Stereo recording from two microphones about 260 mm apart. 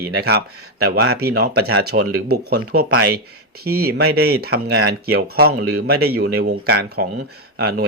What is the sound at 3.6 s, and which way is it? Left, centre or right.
Speech, right.